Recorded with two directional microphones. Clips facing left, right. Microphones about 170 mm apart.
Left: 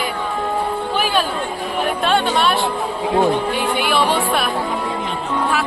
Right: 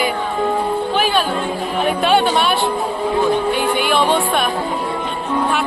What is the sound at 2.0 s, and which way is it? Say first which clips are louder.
Speech: right 2 dB; centre (ahead or behind).